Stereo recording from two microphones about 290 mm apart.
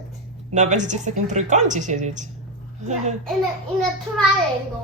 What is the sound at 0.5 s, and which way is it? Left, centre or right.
A woman's voice, right.